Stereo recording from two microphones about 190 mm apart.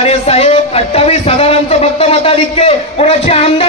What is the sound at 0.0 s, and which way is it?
A man's voice, 35° left (ahead or behind).